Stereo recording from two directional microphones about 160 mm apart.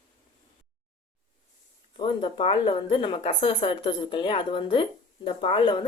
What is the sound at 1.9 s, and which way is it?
Speech, 30° left (ahead or behind).